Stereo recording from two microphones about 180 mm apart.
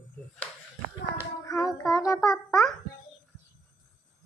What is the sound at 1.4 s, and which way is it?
Child singing, 20° left (ahead or behind).